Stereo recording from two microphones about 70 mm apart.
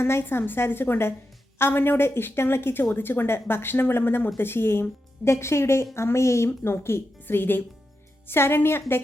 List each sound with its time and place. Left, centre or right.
0.0 s a woman's voice: left